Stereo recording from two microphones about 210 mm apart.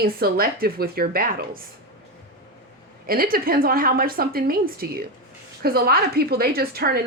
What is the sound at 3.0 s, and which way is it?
A woman's voice, 45° right (ahead or behind).